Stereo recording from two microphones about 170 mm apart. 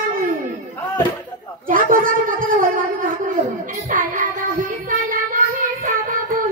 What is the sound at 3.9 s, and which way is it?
Child singing, 50° right (ahead or behind).